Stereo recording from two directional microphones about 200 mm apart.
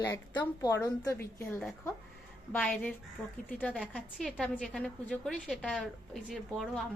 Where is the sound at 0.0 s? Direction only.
15° left (ahead or behind).